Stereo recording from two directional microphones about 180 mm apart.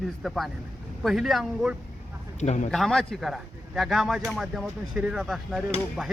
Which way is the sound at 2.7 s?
Centre (ahead or behind).